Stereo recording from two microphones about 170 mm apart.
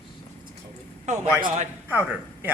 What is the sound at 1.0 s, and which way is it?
Speech, 45° right (ahead or behind).